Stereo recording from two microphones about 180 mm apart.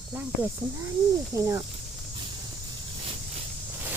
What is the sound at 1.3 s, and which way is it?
Speech, 15° right (ahead or behind).